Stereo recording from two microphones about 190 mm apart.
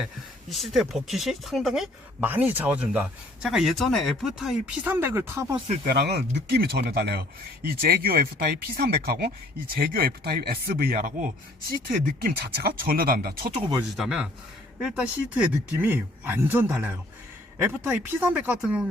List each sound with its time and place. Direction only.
0.5 s speech: centre (ahead or behind)
5.8 s speech: 60° right (ahead or behind)
13.5 s speech: 30° right (ahead or behind)
13.9 s speech: centre (ahead or behind)